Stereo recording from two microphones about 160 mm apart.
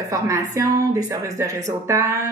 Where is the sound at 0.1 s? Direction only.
20° right (ahead or behind).